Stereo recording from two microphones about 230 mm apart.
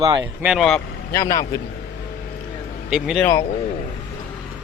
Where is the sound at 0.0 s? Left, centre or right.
Centre.